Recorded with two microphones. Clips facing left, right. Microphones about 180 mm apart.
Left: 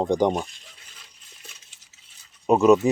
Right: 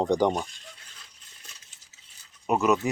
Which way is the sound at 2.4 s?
30° left (ahead or behind).